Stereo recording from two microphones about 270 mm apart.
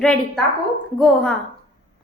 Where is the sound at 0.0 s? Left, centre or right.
Centre.